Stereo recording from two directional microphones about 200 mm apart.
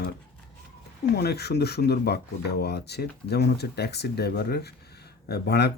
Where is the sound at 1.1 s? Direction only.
55° left (ahead or behind).